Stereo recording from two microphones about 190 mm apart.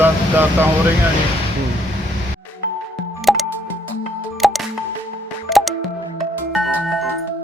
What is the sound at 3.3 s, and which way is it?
Music, centre (ahead or behind).